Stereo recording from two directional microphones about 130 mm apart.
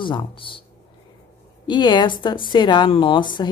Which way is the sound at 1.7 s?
35° left (ahead or behind).